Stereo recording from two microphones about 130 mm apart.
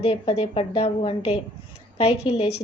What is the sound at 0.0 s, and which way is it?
A woman's voice, 45° left (ahead or behind).